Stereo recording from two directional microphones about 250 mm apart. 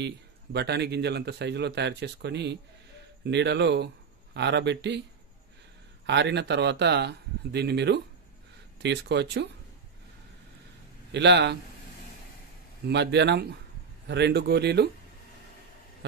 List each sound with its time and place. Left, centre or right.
0.0 s speech: right
6.0 s speech: right
11.1 s a man's voice: right
12.8 s speech: right